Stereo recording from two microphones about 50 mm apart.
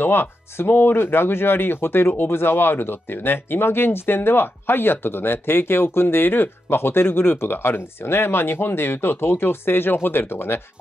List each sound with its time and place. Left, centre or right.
0.0 s speech: left